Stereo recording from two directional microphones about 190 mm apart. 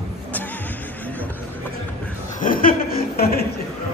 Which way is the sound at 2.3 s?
45° left (ahead or behind).